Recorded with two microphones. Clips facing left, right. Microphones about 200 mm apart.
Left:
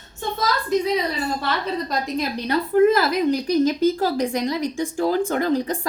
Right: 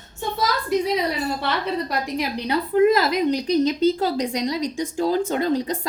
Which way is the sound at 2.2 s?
10° right (ahead or behind).